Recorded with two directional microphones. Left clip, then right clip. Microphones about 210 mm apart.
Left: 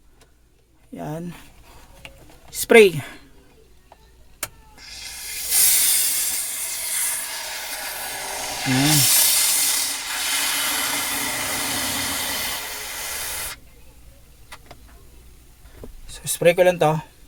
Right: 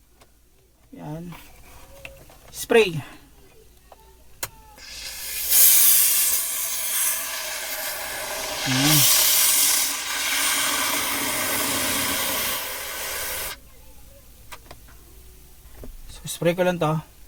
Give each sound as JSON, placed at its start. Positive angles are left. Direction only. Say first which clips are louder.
{"t": 0.9, "sound": "speech", "louder": "left 6 dB", "side_deg": 55}
{"t": 2.5, "sound": "speech", "louder": "left 6 dB", "side_deg": 40}
{"t": 4.8, "sound": "a sound", "louder": "even", "side_deg": -10}
{"t": 6.1, "sound": "train", "louder": "right 1 dB", "side_deg": -10}
{"t": 8.1, "sound": "hiss", "louder": "left 1 dB", "side_deg": -10}
{"t": 16.2, "sound": "speech", "louder": "left 6 dB", "side_deg": 55}